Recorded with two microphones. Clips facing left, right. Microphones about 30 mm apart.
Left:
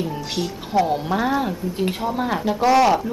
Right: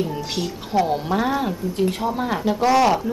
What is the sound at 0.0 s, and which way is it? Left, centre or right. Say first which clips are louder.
Speech: even; centre.